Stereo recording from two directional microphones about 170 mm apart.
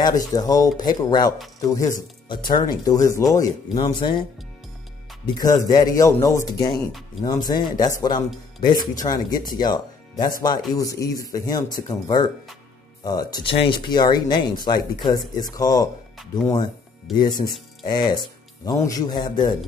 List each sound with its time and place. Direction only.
0.0 s speech: 20° left (ahead or behind)
5.2 s speech: 20° left (ahead or behind)
17.1 s speech: 25° left (ahead or behind)